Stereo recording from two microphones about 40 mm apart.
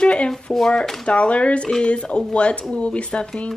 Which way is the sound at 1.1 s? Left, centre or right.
Left.